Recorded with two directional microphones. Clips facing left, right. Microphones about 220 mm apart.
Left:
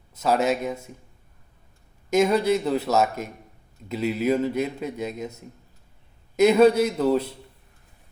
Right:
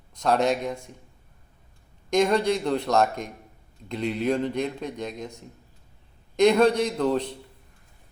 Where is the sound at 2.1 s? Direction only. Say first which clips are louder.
Left 2 dB; 5° left (ahead or behind).